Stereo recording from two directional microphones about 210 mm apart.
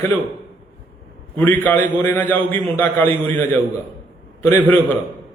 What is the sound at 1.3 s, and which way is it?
A man's voice, 10° left (ahead or behind).